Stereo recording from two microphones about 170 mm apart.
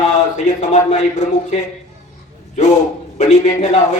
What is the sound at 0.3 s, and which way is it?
A man's voice, 45° left (ahead or behind).